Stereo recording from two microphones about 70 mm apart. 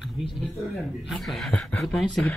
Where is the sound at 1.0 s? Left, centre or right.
Centre.